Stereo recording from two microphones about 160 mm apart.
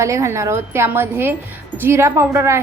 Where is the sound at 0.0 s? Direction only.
20° right (ahead or behind).